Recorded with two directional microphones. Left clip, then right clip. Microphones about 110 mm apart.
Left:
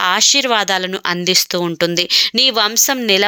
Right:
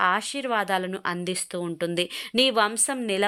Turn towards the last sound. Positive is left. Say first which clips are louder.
# left 11 dB
turn(degrees=25)  # may be behind; listen again after turning